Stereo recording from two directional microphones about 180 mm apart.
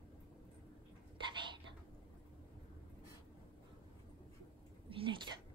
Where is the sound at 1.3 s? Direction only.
25° right (ahead or behind).